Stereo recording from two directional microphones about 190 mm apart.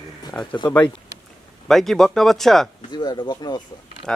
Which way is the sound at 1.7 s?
Centre (ahead or behind).